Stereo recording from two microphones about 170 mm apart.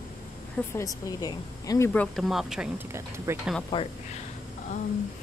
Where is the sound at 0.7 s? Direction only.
20° left (ahead or behind).